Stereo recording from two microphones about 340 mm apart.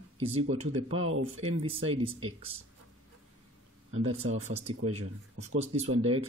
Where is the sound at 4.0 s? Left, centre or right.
Right.